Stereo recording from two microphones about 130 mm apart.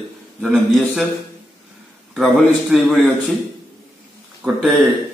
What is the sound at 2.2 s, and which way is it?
Speech, centre (ahead or behind).